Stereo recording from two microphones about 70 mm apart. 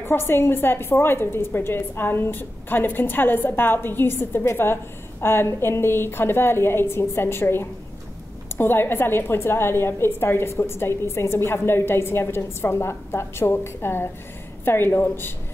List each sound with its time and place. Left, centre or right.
0.0 s a woman's voice: left